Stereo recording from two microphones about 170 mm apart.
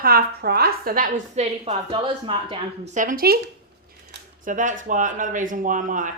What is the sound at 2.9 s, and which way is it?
Speech, 50° right (ahead or behind).